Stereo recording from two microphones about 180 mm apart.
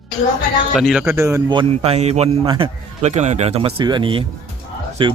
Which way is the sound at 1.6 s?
35° right (ahead or behind).